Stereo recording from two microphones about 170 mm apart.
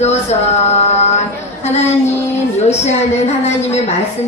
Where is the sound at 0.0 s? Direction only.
40° left (ahead or behind).